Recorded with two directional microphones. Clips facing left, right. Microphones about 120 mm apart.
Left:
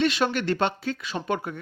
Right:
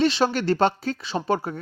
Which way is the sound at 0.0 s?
35° right (ahead or behind).